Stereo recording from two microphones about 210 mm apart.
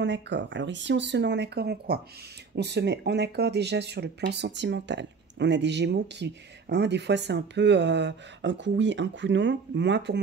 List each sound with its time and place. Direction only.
0.0 s speech: 55° right (ahead or behind)